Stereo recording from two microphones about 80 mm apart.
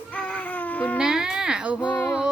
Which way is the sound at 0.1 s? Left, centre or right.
Centre.